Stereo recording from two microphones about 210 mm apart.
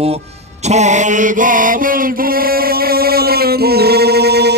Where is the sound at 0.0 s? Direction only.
30° right (ahead or behind).